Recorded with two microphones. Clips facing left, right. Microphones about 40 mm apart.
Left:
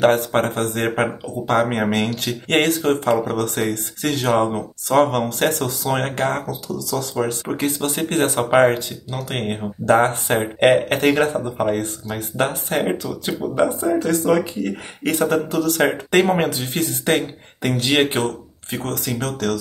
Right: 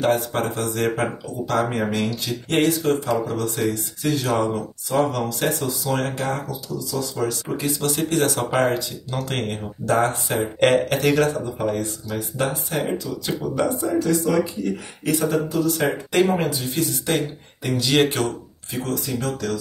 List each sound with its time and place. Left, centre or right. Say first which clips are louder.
0.0 s speech: left 5 dB; left
4.3 s speech: left 6 dB; left
4.9 s speech: left 5 dB; left
5.9 s speech: left 4 dB; left
7.8 s speech: right 1 dB; left
8.4 s speech: left 6 dB; left
9.1 s speech: even; centre
9.8 s speech: left 4 dB; left
13.7 s speech: left 1 dB; left
17.7 s speech: even; left
18.2 s speech: left 1 dB; left
18.9 s speech: left 1 dB; left